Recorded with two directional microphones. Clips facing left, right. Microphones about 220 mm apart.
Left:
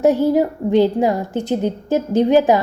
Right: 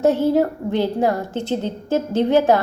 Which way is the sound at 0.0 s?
15° left (ahead or behind).